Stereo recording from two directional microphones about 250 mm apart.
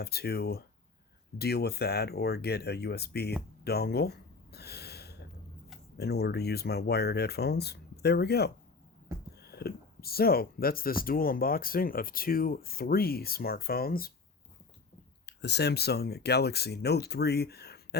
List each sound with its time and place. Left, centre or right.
0.0 s speech: left
3.6 s a sound: left
6.0 s speech: left
15.3 s speech: left